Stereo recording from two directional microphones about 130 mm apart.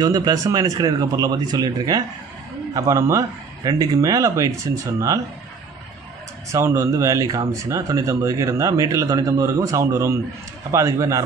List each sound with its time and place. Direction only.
0.0 s speech: 30° right (ahead or behind)
6.5 s speech: 25° right (ahead or behind)